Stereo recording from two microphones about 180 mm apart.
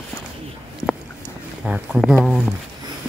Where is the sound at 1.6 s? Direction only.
Centre (ahead or behind).